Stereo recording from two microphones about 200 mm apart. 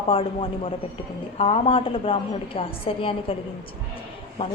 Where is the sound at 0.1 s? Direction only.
30° left (ahead or behind).